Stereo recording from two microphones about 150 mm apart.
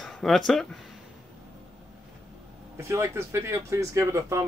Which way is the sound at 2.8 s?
15° right (ahead or behind).